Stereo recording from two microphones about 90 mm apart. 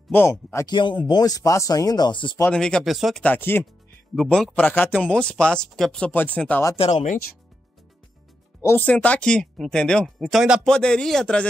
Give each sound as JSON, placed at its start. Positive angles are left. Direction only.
{"t": 0.3, "sound": "speech", "side_deg": 30}
{"t": 0.7, "sound": "speech", "side_deg": 65}
{"t": 1.0, "sound": "speech", "side_deg": 45}
{"t": 2.5, "sound": "speech", "side_deg": 10}
{"t": 2.9, "sound": "speech", "side_deg": 0}
{"t": 3.3, "sound": "speech", "side_deg": 25}
{"t": 4.1, "sound": "speech", "side_deg": 5}
{"t": 4.6, "sound": "speech", "side_deg": 20}
{"t": 6.8, "sound": "speech", "side_deg": 90}
{"t": 8.7, "sound": "speech", "side_deg": 15}
{"t": 10.6, "sound": "speech", "side_deg": 10}